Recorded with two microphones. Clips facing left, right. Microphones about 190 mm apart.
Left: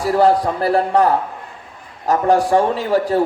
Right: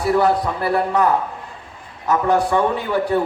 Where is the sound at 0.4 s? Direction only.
35° left (ahead or behind).